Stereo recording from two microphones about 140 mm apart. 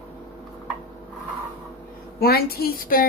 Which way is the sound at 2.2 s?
90° left.